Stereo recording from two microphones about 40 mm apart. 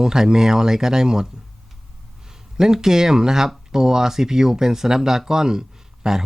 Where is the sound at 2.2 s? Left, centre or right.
Centre.